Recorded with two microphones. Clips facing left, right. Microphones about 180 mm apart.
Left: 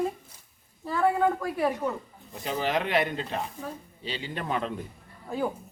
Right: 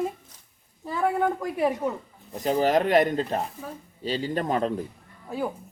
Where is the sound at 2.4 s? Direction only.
40° right (ahead or behind).